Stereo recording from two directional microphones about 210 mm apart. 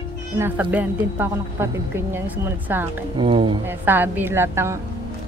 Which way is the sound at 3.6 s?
10° right (ahead or behind).